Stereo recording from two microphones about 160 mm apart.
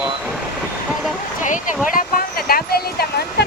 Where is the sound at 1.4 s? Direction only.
55° left (ahead or behind).